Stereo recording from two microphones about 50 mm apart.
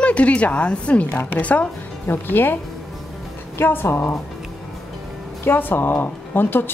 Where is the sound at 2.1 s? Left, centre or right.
Left.